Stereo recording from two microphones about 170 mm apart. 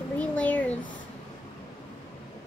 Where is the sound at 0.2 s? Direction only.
10° left (ahead or behind).